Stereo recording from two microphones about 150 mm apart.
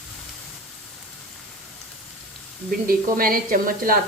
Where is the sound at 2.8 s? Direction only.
70° right (ahead or behind).